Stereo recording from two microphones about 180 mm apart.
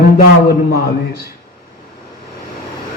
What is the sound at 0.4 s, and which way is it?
Speech, 60° left (ahead or behind).